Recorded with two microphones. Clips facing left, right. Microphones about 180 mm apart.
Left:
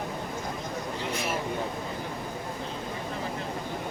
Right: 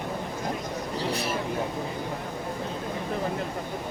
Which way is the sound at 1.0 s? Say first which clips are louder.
Right 3 dB; 35° right (ahead or behind).